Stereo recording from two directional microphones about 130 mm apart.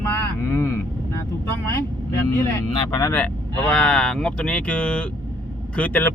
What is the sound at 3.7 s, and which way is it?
Speech, 5° left (ahead or behind).